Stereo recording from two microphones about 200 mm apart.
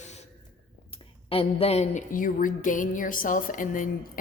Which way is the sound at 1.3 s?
30° left (ahead or behind).